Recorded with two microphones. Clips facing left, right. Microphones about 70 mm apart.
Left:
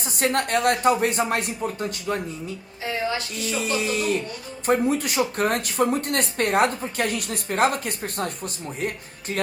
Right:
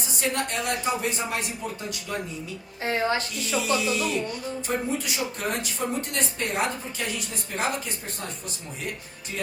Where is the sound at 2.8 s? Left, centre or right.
Right.